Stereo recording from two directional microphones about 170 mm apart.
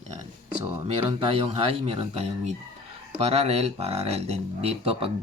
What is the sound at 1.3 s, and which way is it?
Speech, 35° right (ahead or behind).